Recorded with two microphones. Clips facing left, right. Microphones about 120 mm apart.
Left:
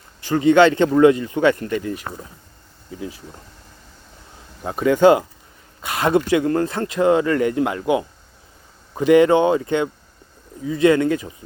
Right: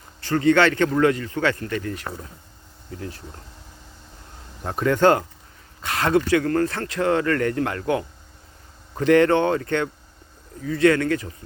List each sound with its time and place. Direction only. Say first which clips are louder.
0.2 s speech: left 4 dB; 15° left (ahead or behind)
4.6 s speech: left 4 dB; 5° left (ahead or behind)